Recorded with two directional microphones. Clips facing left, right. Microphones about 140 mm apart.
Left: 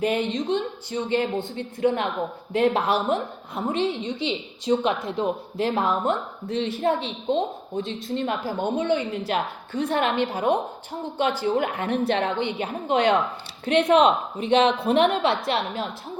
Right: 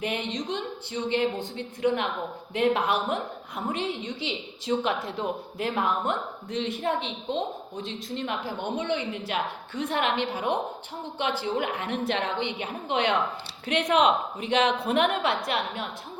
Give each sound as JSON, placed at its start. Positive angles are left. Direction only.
{"t": 0.0, "sound": "a woman's voice", "side_deg": 35}